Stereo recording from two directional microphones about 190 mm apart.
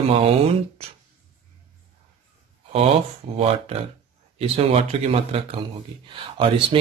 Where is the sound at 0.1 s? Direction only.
30° right (ahead or behind).